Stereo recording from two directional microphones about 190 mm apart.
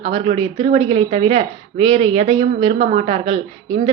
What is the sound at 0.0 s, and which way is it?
A woman's voice, 30° right (ahead or behind).